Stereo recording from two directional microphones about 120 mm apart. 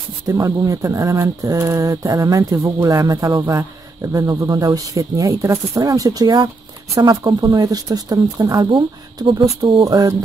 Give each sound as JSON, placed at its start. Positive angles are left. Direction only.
{"t": 0.3, "sound": "speech", "side_deg": -30}
{"t": 9.8, "sound": "speech", "side_deg": -30}